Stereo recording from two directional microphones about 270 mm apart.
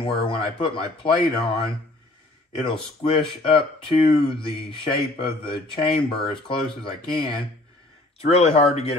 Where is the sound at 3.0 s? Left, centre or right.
Centre.